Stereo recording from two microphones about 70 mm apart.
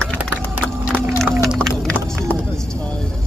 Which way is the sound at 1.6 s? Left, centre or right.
Centre.